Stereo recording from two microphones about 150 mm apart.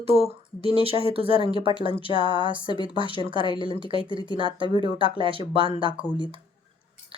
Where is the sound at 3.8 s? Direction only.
35° right (ahead or behind).